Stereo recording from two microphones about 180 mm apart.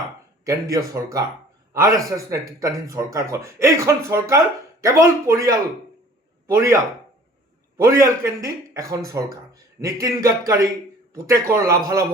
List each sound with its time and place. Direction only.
0.4 s speech: 20° right (ahead or behind)
7.8 s speech: 15° right (ahead or behind)